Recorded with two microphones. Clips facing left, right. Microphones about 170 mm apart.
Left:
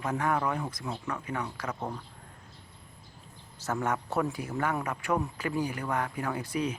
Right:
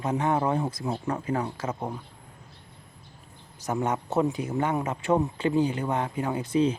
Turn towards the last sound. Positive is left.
turn(degrees=-25)  # may be behind; listen again after turning